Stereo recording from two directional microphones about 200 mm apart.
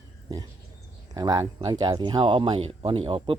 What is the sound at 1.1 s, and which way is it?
Speech, 15° right (ahead or behind).